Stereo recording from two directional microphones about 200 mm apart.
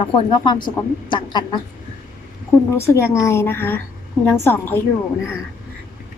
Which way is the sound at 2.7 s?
15° left (ahead or behind).